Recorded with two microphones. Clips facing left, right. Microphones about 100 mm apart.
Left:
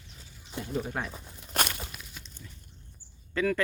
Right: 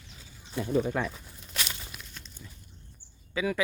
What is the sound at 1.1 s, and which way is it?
Crumpling, 50° left (ahead or behind).